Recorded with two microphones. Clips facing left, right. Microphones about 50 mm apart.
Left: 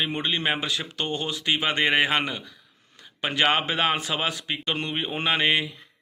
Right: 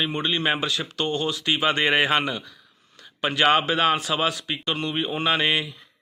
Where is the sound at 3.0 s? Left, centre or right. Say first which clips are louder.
Right 2 dB; centre.